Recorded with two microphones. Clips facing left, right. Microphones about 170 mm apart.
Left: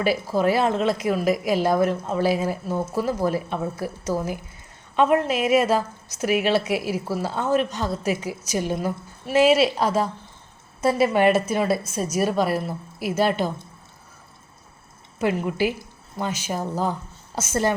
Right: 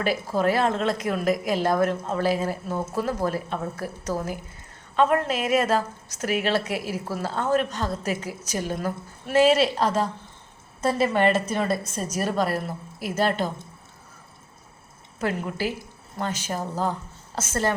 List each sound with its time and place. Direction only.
0.0 s a woman's voice: 10° left (ahead or behind)
15.2 s a woman's voice: 15° left (ahead or behind)